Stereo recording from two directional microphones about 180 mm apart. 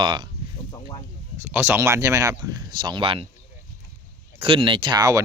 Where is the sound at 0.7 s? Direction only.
25° left (ahead or behind).